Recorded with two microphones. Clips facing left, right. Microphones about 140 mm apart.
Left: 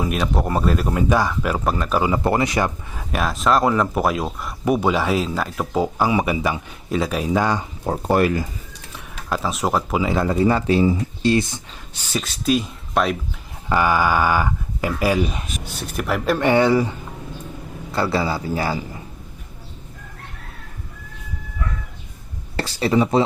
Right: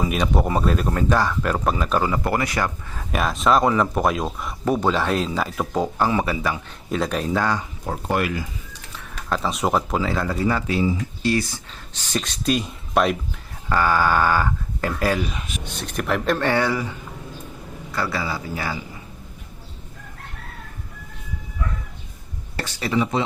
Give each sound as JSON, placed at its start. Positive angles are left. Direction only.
{"t": 0.0, "sound": "speech", "side_deg": 0}
{"t": 2.0, "sound": "speech", "side_deg": 15}
{"t": 3.0, "sound": "speech", "side_deg": 0}
{"t": 4.6, "sound": "speech", "side_deg": 10}
{"t": 6.9, "sound": "speech", "side_deg": 5}
{"t": 7.9, "sound": "speech", "side_deg": 35}
{"t": 9.0, "sound": "speech", "side_deg": 5}
{"t": 10.0, "sound": "speech", "side_deg": 20}
{"t": 13.7, "sound": "speech", "side_deg": 15}
{"t": 17.9, "sound": "speech", "side_deg": 30}
{"t": 22.5, "sound": "speech", "side_deg": 30}